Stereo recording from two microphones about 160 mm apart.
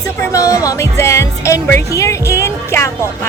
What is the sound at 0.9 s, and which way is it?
Music, 15° left (ahead or behind).